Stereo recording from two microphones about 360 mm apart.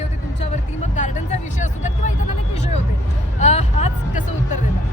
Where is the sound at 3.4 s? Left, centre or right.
Centre.